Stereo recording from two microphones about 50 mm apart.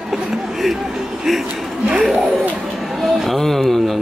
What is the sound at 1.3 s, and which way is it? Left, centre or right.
Speech, centre.